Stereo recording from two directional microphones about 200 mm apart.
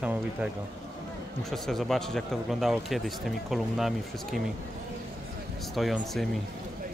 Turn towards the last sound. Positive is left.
turn(degrees=0)  # may be behind; listen again after turning